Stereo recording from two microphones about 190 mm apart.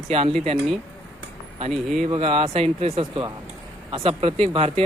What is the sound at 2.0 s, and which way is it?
Speech, 25° right (ahead or behind).